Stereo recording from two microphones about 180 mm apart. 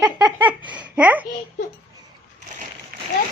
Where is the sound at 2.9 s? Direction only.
55° right (ahead or behind).